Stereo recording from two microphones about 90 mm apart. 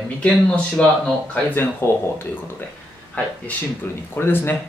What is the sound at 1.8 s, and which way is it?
Speech, 25° left (ahead or behind).